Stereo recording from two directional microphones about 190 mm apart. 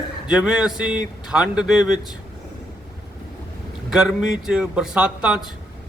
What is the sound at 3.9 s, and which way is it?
A man's voice, 5° right (ahead or behind).